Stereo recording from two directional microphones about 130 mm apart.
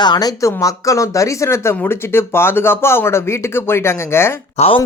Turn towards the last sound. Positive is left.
turn(degrees=50)  # may be behind; listen again after turning